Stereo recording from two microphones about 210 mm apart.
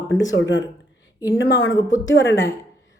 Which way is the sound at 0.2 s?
65° left (ahead or behind).